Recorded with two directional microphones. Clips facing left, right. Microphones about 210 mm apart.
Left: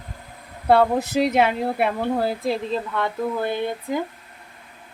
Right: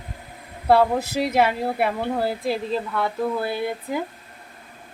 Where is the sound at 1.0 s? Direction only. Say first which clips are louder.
Left 4 dB; 20° left (ahead or behind).